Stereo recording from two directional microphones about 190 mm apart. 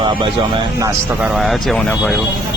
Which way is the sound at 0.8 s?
15° right (ahead or behind).